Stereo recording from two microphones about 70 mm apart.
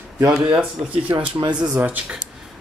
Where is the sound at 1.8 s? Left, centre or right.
Right.